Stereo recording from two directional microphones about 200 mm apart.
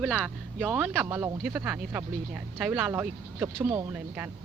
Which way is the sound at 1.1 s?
15° right (ahead or behind).